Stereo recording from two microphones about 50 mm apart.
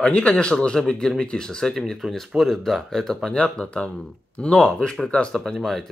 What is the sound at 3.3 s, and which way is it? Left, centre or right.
Speech, left.